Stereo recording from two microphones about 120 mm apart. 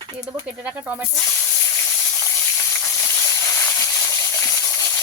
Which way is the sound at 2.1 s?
25° left (ahead or behind).